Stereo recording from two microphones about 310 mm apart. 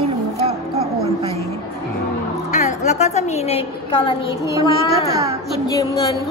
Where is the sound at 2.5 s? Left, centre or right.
Left.